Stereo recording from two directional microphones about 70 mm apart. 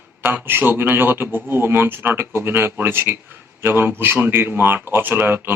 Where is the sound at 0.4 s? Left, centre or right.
Right.